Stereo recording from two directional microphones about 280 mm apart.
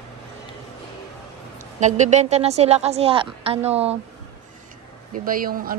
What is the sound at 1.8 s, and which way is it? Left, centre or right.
Speech, right.